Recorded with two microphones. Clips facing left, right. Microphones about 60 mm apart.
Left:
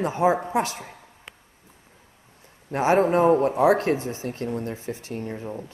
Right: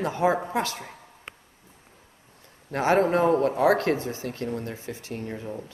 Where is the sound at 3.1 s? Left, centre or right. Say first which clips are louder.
Left 3 dB; left.